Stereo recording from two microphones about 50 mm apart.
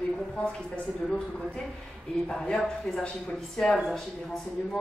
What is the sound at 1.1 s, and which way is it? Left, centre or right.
A woman's voice, centre.